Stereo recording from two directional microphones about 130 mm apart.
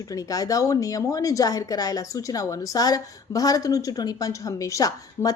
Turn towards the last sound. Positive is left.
turn(degrees=25)  # may be behind; listen again after turning